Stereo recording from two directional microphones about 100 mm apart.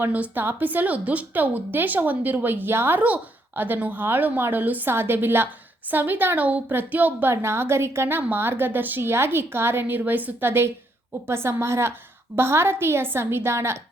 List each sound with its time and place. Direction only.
0.0 s a woman's voice: 15° right (ahead or behind)